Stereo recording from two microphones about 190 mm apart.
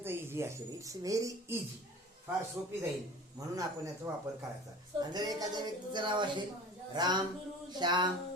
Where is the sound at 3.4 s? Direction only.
20° right (ahead or behind).